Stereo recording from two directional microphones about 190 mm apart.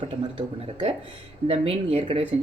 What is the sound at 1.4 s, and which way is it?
Speech, 30° right (ahead or behind).